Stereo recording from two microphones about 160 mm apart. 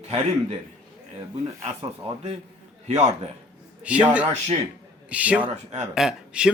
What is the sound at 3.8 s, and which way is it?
Speech, 10° right (ahead or behind).